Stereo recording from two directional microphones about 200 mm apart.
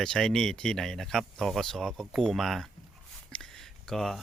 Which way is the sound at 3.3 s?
Centre (ahead or behind).